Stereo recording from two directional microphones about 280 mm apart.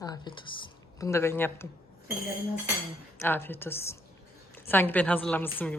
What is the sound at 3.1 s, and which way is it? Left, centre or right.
A man's voice, centre.